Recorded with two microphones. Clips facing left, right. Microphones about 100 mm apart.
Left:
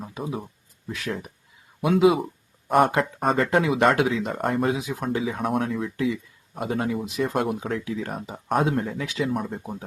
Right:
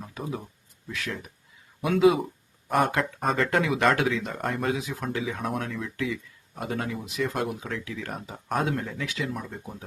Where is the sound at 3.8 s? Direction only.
15° left (ahead or behind).